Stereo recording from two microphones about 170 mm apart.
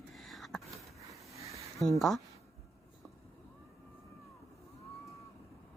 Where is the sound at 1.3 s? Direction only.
20° right (ahead or behind).